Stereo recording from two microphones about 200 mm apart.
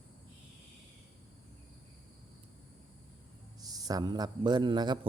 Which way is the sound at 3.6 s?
20° right (ahead or behind).